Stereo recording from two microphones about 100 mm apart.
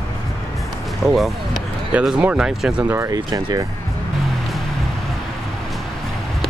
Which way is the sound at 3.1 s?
50° right (ahead or behind).